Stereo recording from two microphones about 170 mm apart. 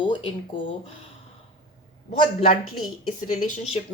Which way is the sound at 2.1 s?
30° left (ahead or behind).